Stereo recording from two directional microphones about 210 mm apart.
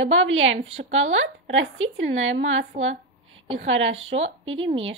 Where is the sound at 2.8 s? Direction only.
65° right (ahead or behind).